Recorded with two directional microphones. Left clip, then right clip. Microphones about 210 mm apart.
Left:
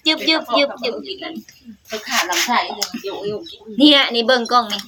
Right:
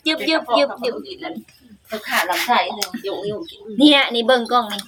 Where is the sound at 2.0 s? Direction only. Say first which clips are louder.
Even; 45° right (ahead or behind).